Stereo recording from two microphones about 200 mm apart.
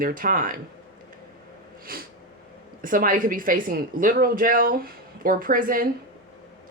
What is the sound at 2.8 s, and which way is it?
Speech, 45° right (ahead or behind).